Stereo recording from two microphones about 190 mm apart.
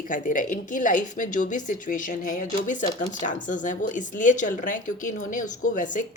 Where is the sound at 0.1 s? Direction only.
45° left (ahead or behind).